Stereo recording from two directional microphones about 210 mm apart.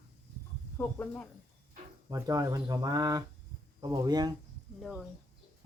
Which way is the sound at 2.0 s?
15° right (ahead or behind).